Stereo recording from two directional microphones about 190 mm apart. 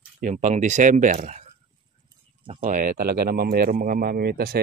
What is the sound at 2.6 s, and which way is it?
Speech, 45° right (ahead or behind).